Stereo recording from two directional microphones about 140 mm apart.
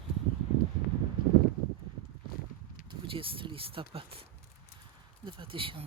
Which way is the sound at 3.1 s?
40° right (ahead or behind).